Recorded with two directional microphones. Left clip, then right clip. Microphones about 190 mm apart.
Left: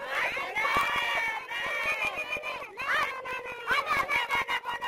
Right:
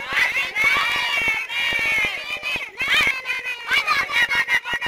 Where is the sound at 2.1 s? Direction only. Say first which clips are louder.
Right 8 dB; centre (ahead or behind).